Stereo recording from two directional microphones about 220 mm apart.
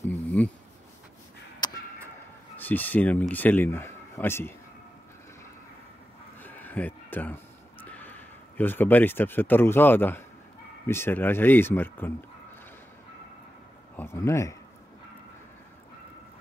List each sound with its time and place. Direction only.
0.4 s speech: 5° left (ahead or behind)
1.6 s a sound: 20° left (ahead or behind)
2.5 s a man's voice: 10° left (ahead or behind)
6.4 s a sound: 10° left (ahead or behind)
10.9 s speech: 10° left (ahead or behind)
13.9 s speech: 10° left (ahead or behind)